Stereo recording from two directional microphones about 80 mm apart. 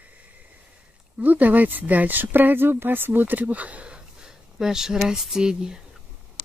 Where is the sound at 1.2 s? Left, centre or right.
Right.